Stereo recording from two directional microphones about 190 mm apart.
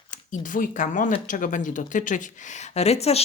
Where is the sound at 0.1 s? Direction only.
45° left (ahead or behind).